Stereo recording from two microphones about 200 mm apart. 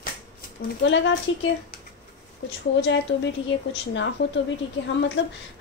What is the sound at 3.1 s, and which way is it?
A woman's voice, 70° left (ahead or behind).